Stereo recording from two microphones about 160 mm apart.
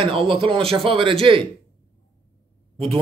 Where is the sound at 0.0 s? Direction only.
35° right (ahead or behind).